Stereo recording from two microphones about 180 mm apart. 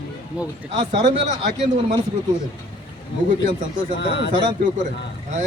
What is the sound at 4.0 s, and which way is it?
Speech, 80° left.